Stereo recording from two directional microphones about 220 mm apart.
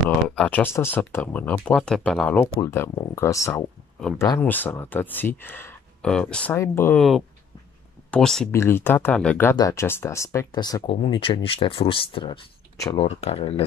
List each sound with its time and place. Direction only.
0.3 s speech: 5° left (ahead or behind); by 13.7 s 25° left (ahead or behind)